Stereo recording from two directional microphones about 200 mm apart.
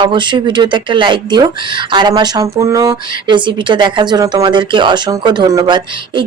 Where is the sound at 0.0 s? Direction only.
25° right (ahead or behind).